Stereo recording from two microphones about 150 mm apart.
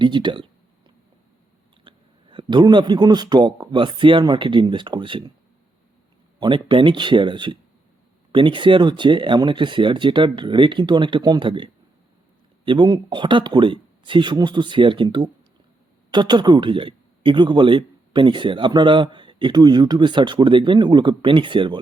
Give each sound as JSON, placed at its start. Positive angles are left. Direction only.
{"t": 0.0, "sound": "a man's voice", "side_deg": -30}
{"t": 1.8, "sound": "speech", "side_deg": -35}
{"t": 6.4, "sound": "a man's voice", "side_deg": -35}